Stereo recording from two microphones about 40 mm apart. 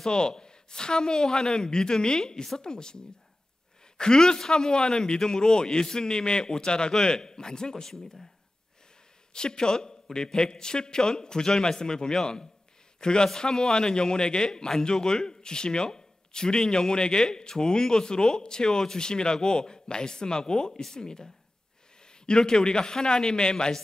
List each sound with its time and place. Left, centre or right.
0.0 s a man's voice: centre
4.0 s a man's voice: centre
9.3 s a man's voice: left